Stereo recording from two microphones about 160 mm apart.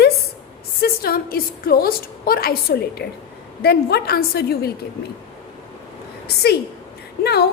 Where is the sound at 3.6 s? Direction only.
85° left.